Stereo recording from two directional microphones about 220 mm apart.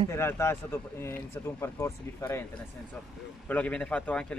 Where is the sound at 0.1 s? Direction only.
10° left (ahead or behind).